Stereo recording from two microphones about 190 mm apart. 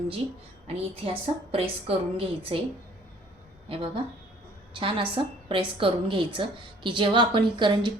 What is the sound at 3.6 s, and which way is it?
A woman's voice, 30° right (ahead or behind).